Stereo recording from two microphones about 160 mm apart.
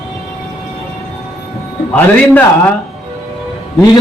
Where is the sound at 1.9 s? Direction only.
10° left (ahead or behind).